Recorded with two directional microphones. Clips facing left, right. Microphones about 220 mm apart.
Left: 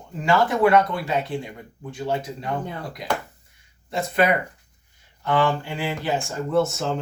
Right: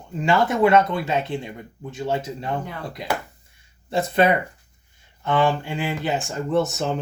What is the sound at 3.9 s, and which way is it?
Speech, 30° right (ahead or behind).